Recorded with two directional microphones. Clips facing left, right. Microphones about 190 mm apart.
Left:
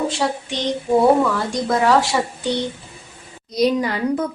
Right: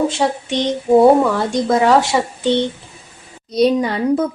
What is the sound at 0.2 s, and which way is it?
Speech, 20° right (ahead or behind).